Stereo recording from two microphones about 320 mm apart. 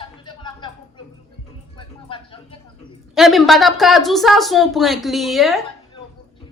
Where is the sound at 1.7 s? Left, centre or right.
Centre.